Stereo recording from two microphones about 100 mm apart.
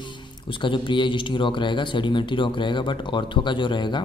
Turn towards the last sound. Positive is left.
turn(degrees=50)  # may be behind; listen again after turning